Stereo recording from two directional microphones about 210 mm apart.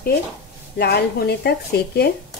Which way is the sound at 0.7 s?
50° left (ahead or behind).